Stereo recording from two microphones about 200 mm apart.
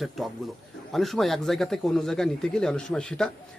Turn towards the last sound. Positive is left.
turn(degrees=5)  # may be behind; listen again after turning